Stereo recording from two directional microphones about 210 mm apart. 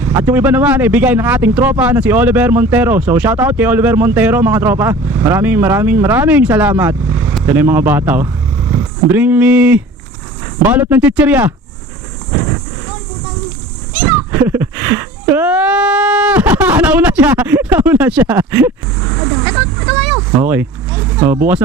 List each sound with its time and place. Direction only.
0.0 s speech: 10° right (ahead or behind)
12.3 s a sound: 20° right (ahead or behind)
14.1 s speech: 10° right (ahead or behind)